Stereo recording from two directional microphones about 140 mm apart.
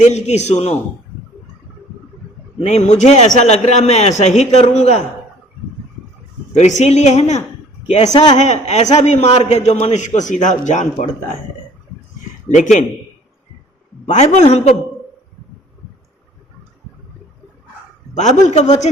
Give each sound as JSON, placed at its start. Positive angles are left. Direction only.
{"t": 0.0, "sound": "a man's voice", "side_deg": 55}
{"t": 2.6, "sound": "a man's voice", "side_deg": 55}
{"t": 6.5, "sound": "a man's voice", "side_deg": 55}
{"t": 12.5, "sound": "speech", "side_deg": 55}
{"t": 14.1, "sound": "speech", "side_deg": 55}
{"t": 18.1, "sound": "speech", "side_deg": 60}